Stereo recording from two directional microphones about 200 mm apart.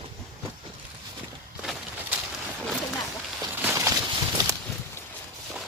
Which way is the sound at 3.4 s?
10° right (ahead or behind).